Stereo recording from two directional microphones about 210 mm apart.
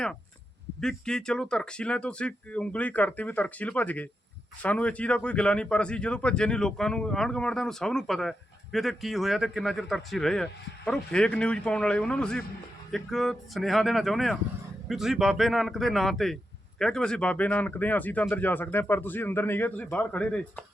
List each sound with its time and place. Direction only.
0.8 s speech: 5° left (ahead or behind)